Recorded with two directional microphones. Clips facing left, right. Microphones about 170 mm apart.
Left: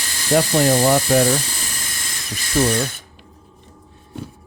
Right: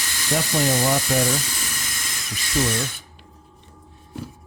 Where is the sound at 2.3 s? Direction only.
35° left (ahead or behind).